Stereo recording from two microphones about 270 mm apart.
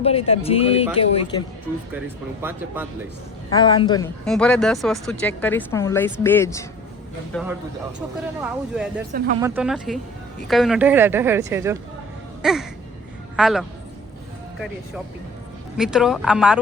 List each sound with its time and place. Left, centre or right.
0.0 s speech: left
2.4 s speech: centre
3.5 s a man's voice: centre
4.3 s a man's voice: centre
7.9 s speech: centre
12.4 s a sound: centre
13.3 s speech: centre
15.8 s speech: centre